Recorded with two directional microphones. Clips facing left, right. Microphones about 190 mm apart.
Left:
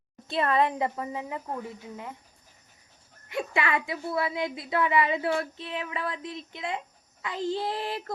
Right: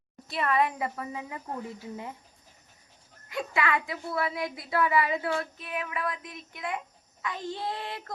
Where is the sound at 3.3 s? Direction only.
25° left (ahead or behind).